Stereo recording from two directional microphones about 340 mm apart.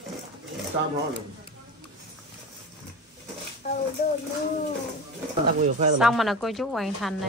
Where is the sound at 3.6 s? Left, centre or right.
Centre.